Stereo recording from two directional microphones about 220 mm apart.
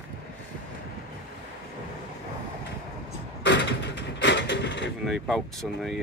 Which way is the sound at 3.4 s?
55° left (ahead or behind).